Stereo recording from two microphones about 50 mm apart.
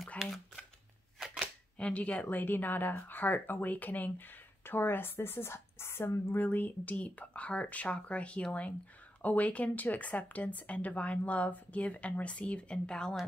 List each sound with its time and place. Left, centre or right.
1.8 s speech: left
2.2 s speech: left
6.4 s speech: left; by 13.1 s centre